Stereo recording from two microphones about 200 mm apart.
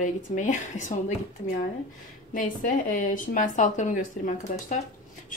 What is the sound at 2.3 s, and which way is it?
A woman's voice, 40° left (ahead or behind).